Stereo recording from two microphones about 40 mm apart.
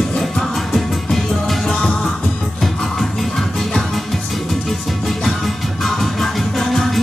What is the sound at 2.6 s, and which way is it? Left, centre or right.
Music, centre.